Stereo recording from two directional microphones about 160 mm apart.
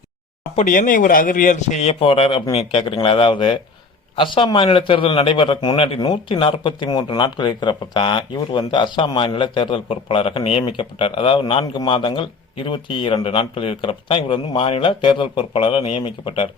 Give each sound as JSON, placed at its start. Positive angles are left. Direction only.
{"t": 0.5, "sound": "a man's voice", "side_deg": 55}